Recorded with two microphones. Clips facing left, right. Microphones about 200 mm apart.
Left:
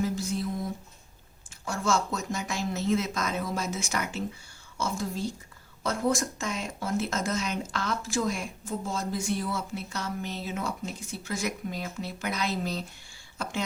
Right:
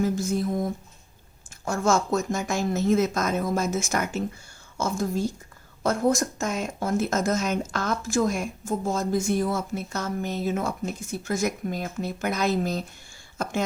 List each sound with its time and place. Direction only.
0.0 s speech: 50° right (ahead or behind)